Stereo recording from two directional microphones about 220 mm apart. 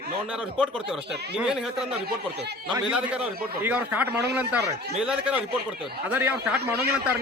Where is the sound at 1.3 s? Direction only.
5° right (ahead or behind).